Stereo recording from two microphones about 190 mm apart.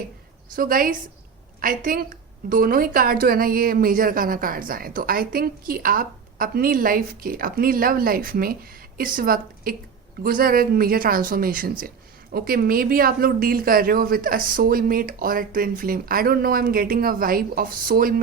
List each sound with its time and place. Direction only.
0.5 s a woman's voice: 50° right (ahead or behind)